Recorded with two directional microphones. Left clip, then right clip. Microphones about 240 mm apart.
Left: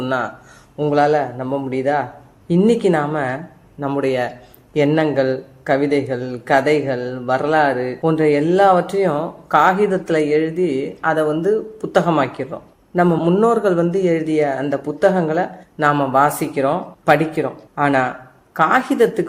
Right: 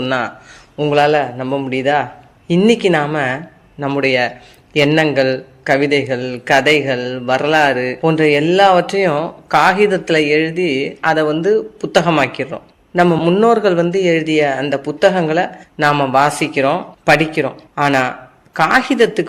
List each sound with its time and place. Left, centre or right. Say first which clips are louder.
0.0 s a man's voice: right 3 dB; right
8.4 s speech: right 3 dB; right
8.6 s speech: right 2 dB; right